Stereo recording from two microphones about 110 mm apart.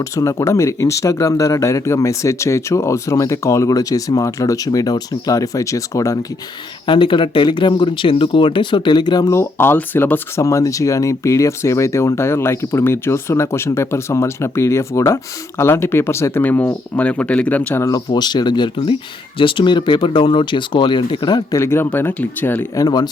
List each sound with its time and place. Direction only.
0.0 s speech: 30° left (ahead or behind)
6.8 s speech: 50° left (ahead or behind)
9.3 s speech: 20° left (ahead or behind)
17.8 s speech: 35° left (ahead or behind)
21.6 s speech: 20° left (ahead or behind)
22.7 s speech: 35° left (ahead or behind)